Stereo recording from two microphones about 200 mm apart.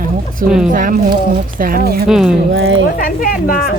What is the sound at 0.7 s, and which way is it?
Speech, 40° right (ahead or behind).